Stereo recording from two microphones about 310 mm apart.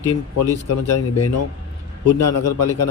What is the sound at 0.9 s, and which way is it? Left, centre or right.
A man's voice, left.